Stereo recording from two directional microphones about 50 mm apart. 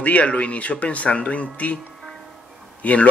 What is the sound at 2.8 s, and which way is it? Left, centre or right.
Speech, left.